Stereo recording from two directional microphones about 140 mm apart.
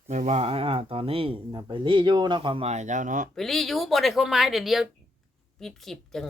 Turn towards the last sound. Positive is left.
turn(degrees=0)  # may be behind; listen again after turning